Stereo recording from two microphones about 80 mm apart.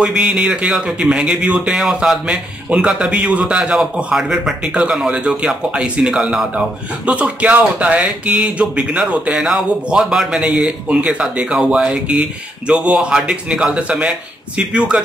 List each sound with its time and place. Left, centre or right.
0.0 s speech: centre